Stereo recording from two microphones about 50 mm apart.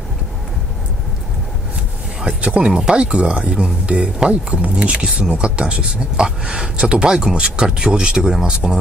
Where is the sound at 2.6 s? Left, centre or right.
Centre.